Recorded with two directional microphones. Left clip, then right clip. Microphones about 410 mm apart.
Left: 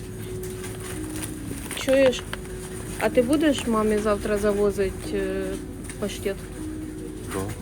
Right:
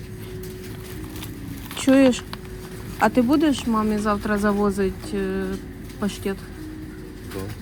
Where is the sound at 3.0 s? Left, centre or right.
Centre.